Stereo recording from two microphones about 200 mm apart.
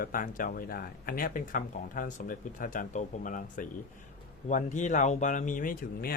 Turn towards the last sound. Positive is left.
turn(degrees=45)  # may be behind; listen again after turning